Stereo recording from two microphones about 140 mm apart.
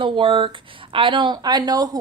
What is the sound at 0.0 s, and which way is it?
A woman's voice, 35° right (ahead or behind).